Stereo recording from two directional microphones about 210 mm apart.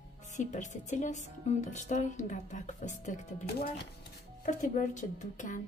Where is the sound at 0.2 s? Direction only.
35° left (ahead or behind).